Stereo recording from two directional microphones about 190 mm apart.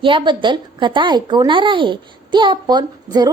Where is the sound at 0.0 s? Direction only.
25° right (ahead or behind).